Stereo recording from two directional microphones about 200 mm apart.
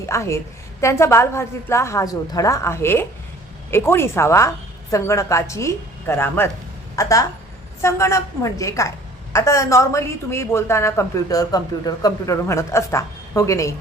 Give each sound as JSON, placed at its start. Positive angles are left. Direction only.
{"t": 0.0, "sound": "a woman's voice", "side_deg": 15}